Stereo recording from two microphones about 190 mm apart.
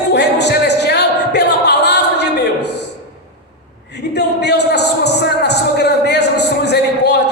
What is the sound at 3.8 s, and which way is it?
Music, 60° left (ahead or behind).